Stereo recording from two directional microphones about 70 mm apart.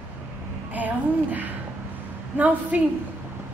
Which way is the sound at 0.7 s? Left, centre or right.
Right.